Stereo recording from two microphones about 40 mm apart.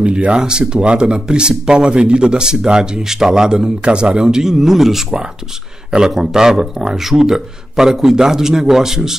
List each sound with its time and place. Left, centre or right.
0.0 s speech: right; by 5.0 s centre
5.9 s speech: centre